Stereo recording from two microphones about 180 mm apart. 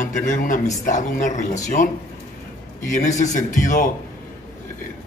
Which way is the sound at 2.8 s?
45° left (ahead or behind).